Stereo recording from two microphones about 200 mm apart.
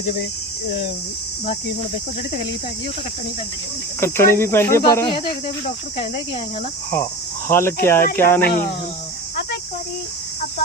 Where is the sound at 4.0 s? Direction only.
10° left (ahead or behind).